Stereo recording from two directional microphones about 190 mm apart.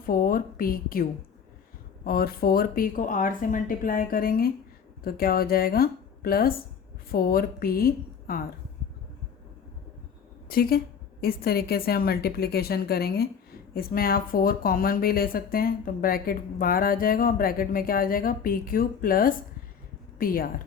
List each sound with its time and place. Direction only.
0.0 s speech: 45° left (ahead or behind)
2.0 s speech: 50° left (ahead or behind)
10.5 s speech: 50° left (ahead or behind)